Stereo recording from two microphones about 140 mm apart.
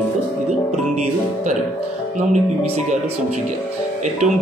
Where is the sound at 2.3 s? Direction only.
55° right (ahead or behind).